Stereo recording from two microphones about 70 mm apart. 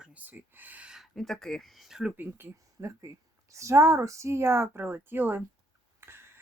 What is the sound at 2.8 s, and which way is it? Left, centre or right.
Speech, right.